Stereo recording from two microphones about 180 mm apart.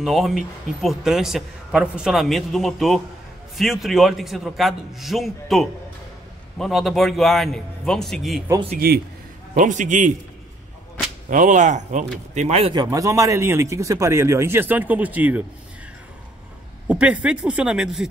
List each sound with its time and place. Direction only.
0.0 s a man's voice: centre (ahead or behind)
8.7 s a man's voice: 60° right (ahead or behind)
9.5 s speech: 45° right (ahead or behind)
11.2 s speech: 45° right (ahead or behind)
12.8 s speech: 20° right (ahead or behind)
16.8 s a man's voice: 5° right (ahead or behind)